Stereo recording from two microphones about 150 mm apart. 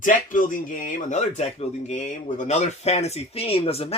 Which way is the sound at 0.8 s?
50° left (ahead or behind).